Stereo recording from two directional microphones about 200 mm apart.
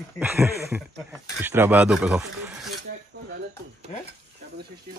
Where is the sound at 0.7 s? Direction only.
Centre (ahead or behind).